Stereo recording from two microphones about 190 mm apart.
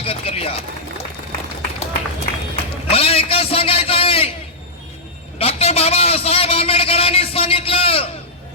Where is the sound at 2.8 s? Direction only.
30° left (ahead or behind).